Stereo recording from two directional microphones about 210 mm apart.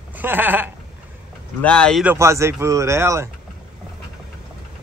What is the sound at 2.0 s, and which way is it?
Speech, 10° right (ahead or behind).